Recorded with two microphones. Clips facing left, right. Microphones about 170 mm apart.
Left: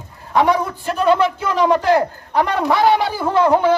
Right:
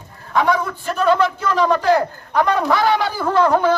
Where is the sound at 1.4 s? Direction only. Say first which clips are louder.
Left 1 dB; 20° left (ahead or behind).